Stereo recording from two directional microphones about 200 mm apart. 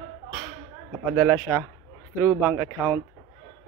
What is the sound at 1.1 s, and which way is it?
Speech, 5° left (ahead or behind).